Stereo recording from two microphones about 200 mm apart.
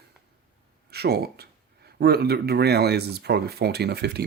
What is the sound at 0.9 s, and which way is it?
Speech, 50° right (ahead or behind).